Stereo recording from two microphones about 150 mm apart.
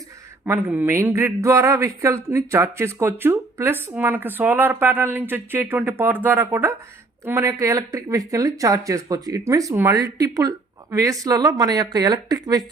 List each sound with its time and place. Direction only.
0.4 s a man's voice: 15° right (ahead or behind)